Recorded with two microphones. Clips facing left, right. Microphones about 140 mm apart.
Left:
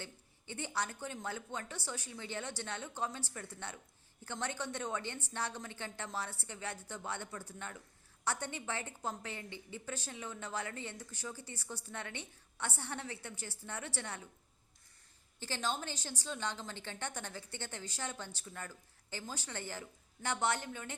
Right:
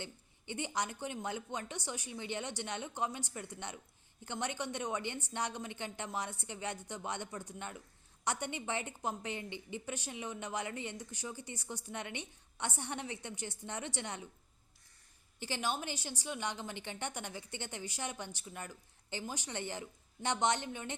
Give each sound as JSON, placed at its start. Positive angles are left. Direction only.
{"t": 0.0, "sound": "a woman's voice", "side_deg": -15}
{"t": 15.4, "sound": "a woman's voice", "side_deg": -15}